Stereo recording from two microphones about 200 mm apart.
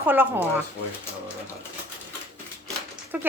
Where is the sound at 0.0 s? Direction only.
10° right (ahead or behind).